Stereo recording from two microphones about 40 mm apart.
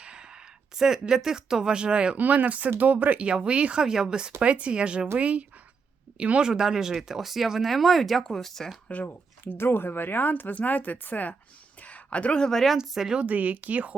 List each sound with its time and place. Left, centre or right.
0.0 s a sound: right
0.9 s speech: centre
2.1 s speech: right
3.2 s speech: right
3.8 s speech: centre
4.4 s speech: right
6.4 s speech: centre
8.9 s speech: left
9.4 s speech: left
11.8 s a sound: left
12.4 s speech: centre
12.7 s speech: centre
13.2 s speech: right